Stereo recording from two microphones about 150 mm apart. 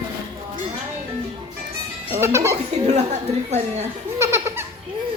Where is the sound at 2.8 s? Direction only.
45° right (ahead or behind).